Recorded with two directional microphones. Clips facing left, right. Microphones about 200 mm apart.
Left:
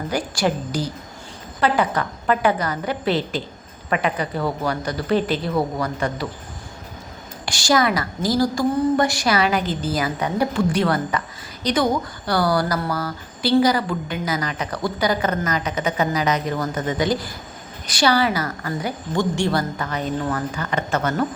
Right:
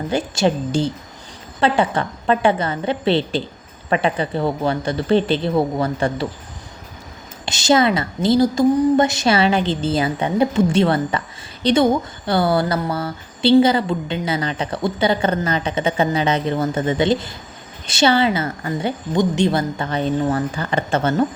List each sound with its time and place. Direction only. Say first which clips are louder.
0.1 s speech: right 4 dB; 25° right (ahead or behind)
7.4 s speech: right 3 dB; 20° right (ahead or behind)